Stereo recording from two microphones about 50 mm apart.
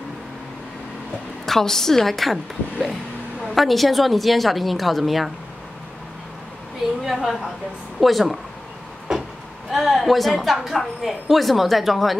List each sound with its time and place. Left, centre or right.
1.4 s a woman's voice: centre
7.0 s a woman's voice: centre
9.1 s vehicle: centre
9.7 s a woman's voice: centre